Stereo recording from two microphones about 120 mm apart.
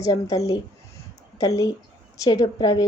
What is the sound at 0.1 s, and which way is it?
A woman's voice, 30° left (ahead or behind).